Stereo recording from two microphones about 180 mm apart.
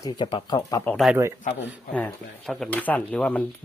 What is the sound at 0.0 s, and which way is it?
Speech, 30° left (ahead or behind).